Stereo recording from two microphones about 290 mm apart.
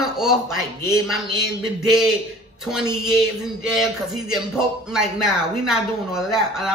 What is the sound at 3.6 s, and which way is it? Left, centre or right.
Speech, centre.